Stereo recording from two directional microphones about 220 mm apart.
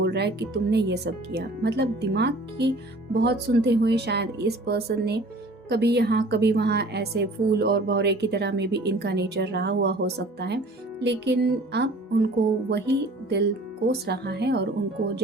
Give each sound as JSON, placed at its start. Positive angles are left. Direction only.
{"t": 0.0, "sound": "speech", "side_deg": -50}
{"t": 13.8, "sound": "speech", "side_deg": -50}